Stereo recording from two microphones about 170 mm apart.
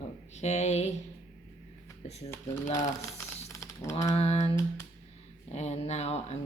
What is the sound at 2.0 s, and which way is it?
Speech, 40° left (ahead or behind).